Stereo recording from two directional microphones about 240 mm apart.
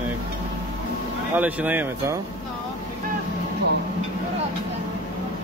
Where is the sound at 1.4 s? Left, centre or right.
Centre.